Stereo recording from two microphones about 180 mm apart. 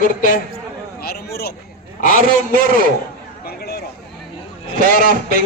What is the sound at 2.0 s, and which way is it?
Speech, 50° left (ahead or behind).